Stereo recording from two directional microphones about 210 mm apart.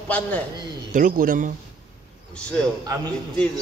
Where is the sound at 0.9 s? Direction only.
40° right (ahead or behind).